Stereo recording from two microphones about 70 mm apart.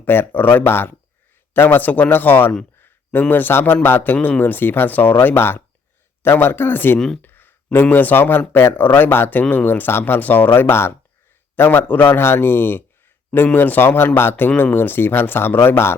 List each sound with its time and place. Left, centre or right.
0.0 s a man's voice: left